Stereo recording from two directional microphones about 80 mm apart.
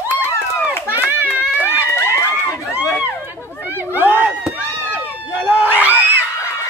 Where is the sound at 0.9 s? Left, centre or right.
Right.